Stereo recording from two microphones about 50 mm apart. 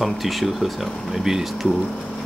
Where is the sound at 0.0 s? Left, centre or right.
Centre.